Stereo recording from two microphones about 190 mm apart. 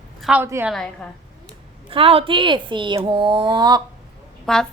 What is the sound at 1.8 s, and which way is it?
Speech, 30° right (ahead or behind).